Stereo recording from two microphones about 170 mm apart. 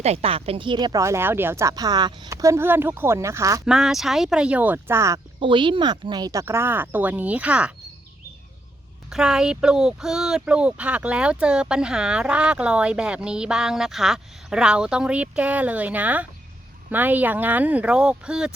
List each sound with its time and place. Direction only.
0.0 s speech: 35° right (ahead or behind); by 3.6 s 15° right (ahead or behind)
3.7 s speech: 5° right (ahead or behind)
5.4 s speech: 30° right (ahead or behind); by 7.7 s 5° right (ahead or behind)
9.0 s speech: 5° right (ahead or behind)